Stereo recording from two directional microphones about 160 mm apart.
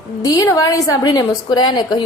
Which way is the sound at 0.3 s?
20° left (ahead or behind).